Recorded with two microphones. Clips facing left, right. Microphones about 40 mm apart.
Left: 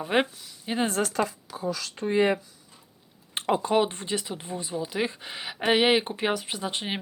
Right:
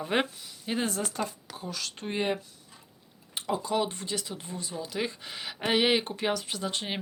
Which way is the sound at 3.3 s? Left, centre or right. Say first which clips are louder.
Left 5 dB; left.